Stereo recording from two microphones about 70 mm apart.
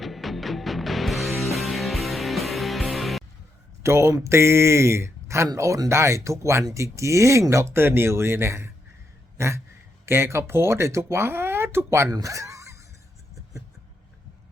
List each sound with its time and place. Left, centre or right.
0.0 s music: centre
3.8 s speech: right
12.1 s a sound: right